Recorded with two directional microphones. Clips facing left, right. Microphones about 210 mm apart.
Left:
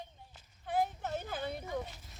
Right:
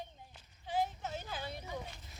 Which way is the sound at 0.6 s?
55° left (ahead or behind).